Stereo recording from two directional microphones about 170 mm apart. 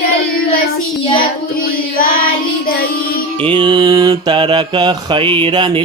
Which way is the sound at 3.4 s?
30° right (ahead or behind).